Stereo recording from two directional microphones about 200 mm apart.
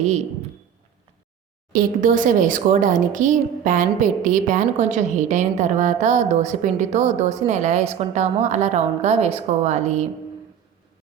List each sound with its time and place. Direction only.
1.7 s speech: 40° right (ahead or behind)